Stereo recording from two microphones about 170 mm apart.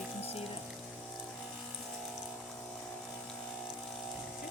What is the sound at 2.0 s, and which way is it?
Water, centre (ahead or behind).